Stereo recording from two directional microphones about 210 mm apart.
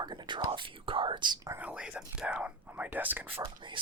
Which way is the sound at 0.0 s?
20° right (ahead or behind).